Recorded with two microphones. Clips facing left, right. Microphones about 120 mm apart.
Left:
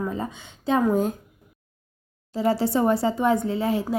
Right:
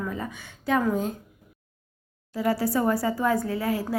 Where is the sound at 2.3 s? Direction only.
25° left (ahead or behind).